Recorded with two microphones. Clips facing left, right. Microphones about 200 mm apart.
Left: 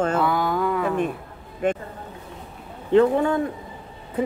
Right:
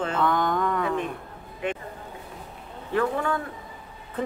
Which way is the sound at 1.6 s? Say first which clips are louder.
Left 7 dB; 45° left (ahead or behind).